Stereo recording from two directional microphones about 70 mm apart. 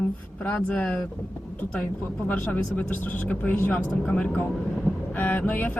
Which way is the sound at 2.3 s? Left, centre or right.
Left.